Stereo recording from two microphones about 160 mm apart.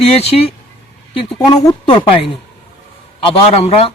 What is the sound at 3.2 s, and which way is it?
Speech, 35° left (ahead or behind).